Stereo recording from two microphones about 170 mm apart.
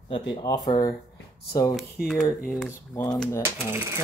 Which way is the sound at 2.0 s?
65° left (ahead or behind).